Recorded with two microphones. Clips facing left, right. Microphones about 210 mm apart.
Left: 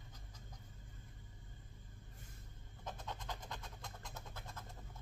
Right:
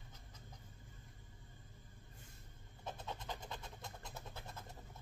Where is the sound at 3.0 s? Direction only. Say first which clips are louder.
Right 2 dB; 20° right (ahead or behind).